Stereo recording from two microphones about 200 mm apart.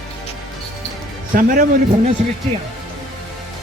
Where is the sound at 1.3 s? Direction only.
45° right (ahead or behind).